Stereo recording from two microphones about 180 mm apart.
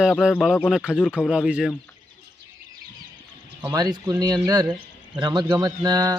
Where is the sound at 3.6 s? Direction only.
20° right (ahead or behind).